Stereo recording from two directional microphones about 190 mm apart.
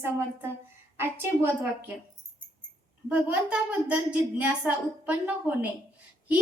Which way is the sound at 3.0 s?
5° right (ahead or behind).